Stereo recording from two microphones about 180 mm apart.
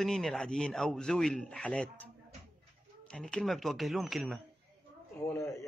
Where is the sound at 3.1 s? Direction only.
5° left (ahead or behind).